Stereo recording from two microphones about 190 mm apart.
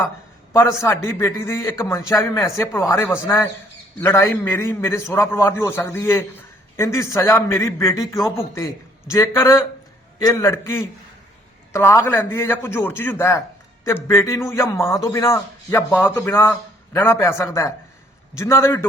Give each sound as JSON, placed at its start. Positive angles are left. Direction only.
{"t": 0.5, "sound": "a man's voice", "side_deg": 15}